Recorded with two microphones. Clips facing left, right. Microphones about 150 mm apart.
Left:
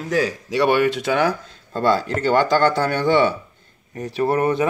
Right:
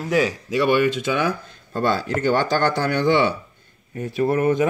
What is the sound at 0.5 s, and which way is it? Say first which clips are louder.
Speech: left 1 dB; 85° left.